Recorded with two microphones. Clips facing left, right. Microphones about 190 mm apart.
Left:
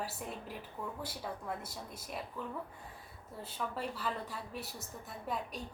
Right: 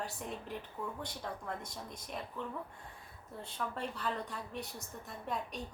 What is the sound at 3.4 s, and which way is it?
A woman's voice, 5° left (ahead or behind).